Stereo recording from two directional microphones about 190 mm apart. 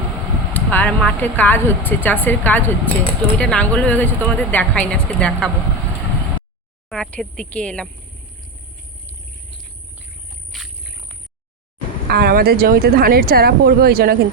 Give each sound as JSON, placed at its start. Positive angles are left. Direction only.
{"t": 0.5, "sound": "speech", "side_deg": 10}
{"t": 6.9, "sound": "speech", "side_deg": 5}
{"t": 10.5, "sound": "a sound", "side_deg": 0}
{"t": 12.0, "sound": "speech", "side_deg": -55}